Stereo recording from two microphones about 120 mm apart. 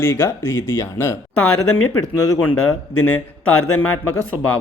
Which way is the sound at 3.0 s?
15° left (ahead or behind).